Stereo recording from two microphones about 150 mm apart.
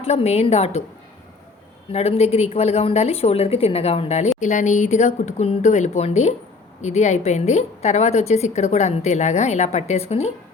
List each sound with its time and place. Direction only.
0.0 s a woman's voice: 45° left (ahead or behind)
1.9 s a woman's voice: 45° left (ahead or behind)